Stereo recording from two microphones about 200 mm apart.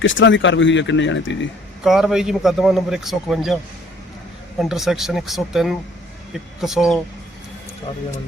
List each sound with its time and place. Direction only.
0.0 s speech: 70° left (ahead or behind)
1.8 s a man's voice: centre (ahead or behind)
4.6 s a man's voice: centre (ahead or behind)